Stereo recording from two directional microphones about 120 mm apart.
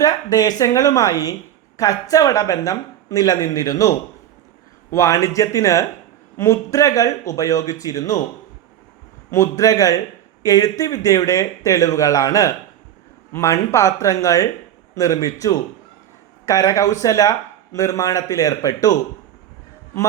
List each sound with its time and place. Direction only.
0.0 s a woman's voice: 30° left (ahead or behind)
9.3 s a woman's voice: 25° left (ahead or behind)